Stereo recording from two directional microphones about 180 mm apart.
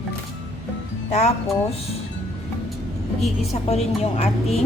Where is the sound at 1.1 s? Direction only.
40° left (ahead or behind).